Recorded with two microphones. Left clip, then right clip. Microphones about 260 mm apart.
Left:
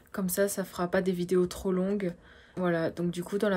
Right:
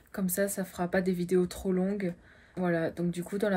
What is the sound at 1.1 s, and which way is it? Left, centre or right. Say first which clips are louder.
Speech: even; left.